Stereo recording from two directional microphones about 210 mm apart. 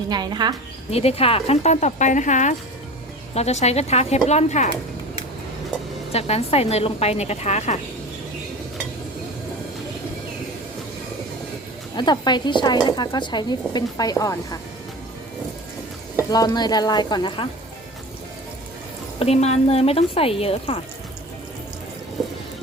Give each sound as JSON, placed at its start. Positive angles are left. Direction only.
{"t": 0.1, "sound": "speech", "side_deg": -20}
{"t": 0.9, "sound": "speech", "side_deg": 30}
{"t": 6.1, "sound": "speech", "side_deg": 30}
{"t": 11.9, "sound": "speech", "side_deg": 20}
{"t": 16.3, "sound": "speech", "side_deg": 20}
{"t": 19.2, "sound": "speech", "side_deg": 30}